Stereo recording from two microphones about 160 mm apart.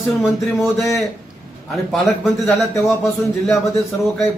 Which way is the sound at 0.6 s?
20° left (ahead or behind).